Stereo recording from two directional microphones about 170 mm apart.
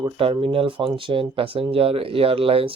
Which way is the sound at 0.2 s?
30° right (ahead or behind).